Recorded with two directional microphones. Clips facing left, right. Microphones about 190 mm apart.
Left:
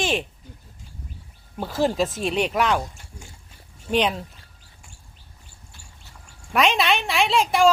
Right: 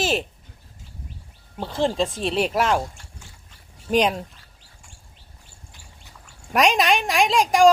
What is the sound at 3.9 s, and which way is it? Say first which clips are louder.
Speech: right 2 dB; 40° right (ahead or behind).